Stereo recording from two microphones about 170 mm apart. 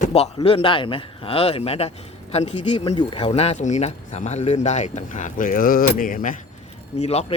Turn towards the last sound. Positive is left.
turn(degrees=40)  # may be behind; listen again after turning